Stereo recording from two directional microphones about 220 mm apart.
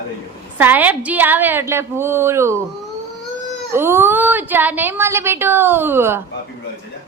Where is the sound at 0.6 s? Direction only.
10° right (ahead or behind).